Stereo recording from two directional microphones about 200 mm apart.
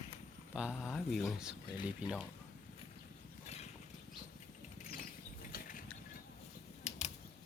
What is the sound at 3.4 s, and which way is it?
Clip-clop, 35° left (ahead or behind).